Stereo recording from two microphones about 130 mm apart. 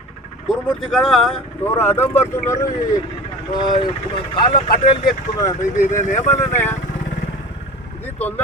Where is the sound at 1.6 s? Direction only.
20° left (ahead or behind).